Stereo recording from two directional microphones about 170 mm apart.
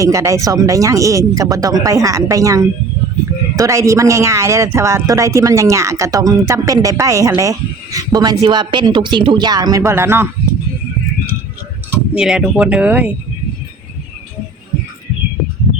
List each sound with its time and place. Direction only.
0.0 s speech: 20° right (ahead or behind)
11.9 s speech: 5° right (ahead or behind)